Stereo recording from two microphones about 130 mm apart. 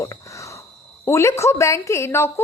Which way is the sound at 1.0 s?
20° left (ahead or behind).